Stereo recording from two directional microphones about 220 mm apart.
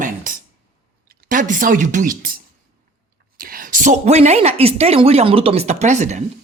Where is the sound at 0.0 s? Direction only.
40° right (ahead or behind).